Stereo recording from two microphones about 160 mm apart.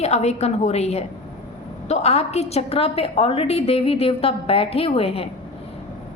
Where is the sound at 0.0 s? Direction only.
45° left (ahead or behind).